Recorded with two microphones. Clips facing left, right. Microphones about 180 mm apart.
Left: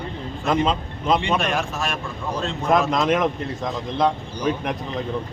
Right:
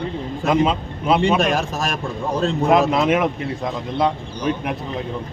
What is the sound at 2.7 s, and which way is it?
A man's voice, 5° right (ahead or behind).